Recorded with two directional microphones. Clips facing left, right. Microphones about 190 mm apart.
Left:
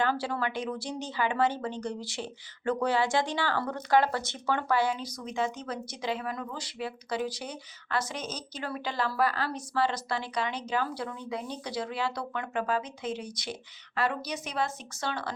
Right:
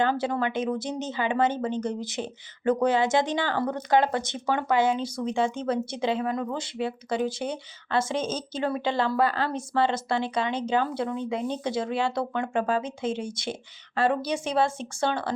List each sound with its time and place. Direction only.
0.0 s speech: 20° right (ahead or behind)